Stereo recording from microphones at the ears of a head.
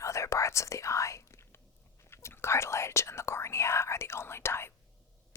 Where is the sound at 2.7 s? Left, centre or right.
Left.